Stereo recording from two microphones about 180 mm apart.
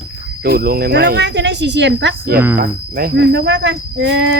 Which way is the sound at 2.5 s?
55° right (ahead or behind).